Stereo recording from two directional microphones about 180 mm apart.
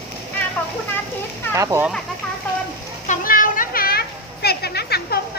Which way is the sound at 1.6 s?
15° right (ahead or behind).